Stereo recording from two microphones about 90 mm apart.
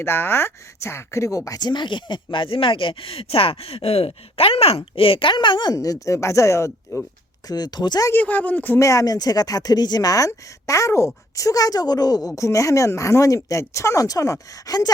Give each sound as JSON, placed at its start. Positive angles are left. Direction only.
{"t": 0.0, "sound": "speech", "side_deg": 25}
{"t": 7.4, "sound": "speech", "side_deg": 50}
{"t": 8.1, "sound": "speech", "side_deg": 20}
{"t": 8.8, "sound": "speech", "side_deg": 40}